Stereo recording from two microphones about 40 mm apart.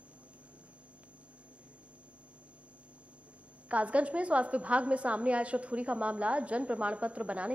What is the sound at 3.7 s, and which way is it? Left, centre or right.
A woman's voice, right.